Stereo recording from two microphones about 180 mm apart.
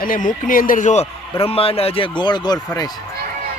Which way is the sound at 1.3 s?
30° left (ahead or behind).